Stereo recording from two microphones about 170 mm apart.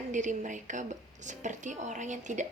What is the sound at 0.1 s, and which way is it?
A woman's voice, 45° right (ahead or behind).